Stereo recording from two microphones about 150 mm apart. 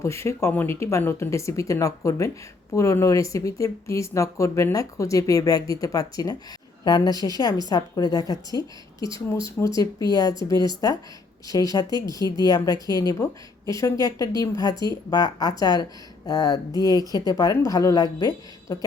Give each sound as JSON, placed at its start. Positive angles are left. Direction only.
{"t": 0.0, "sound": "speech", "side_deg": 20}
{"t": 11.9, "sound": "a woman's voice", "side_deg": -25}
{"t": 12.4, "sound": "speech", "side_deg": 25}